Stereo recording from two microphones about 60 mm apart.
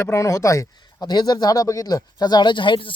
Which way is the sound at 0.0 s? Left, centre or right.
Left.